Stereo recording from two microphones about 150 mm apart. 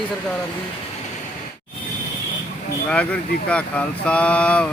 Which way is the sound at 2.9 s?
10° left (ahead or behind).